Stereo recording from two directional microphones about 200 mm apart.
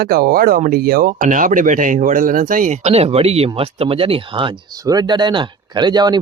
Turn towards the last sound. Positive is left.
turn(degrees=-20)  # may be behind; listen again after turning